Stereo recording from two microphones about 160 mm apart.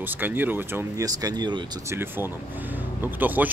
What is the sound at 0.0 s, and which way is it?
Speech, 10° right (ahead or behind).